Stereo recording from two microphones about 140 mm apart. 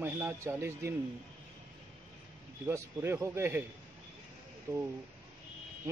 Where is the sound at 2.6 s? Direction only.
15° right (ahead or behind).